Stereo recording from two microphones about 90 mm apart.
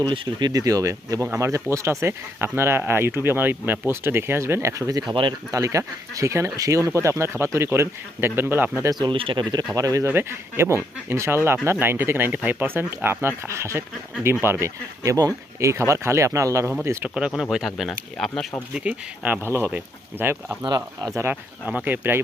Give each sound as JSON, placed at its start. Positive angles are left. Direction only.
{"t": 0.1, "sound": "speech", "side_deg": -55}
{"t": 9.0, "sound": "speech", "side_deg": -70}
{"t": 9.4, "sound": "speech", "side_deg": -55}
{"t": 9.7, "sound": "speech", "side_deg": -40}
{"t": 10.1, "sound": "speech", "side_deg": -25}
{"t": 17.2, "sound": "speech", "side_deg": -10}
{"t": 18.7, "sound": "speech", "side_deg": -15}
{"t": 20.7, "sound": "speech", "side_deg": -50}
{"t": 21.6, "sound": "speech", "side_deg": -15}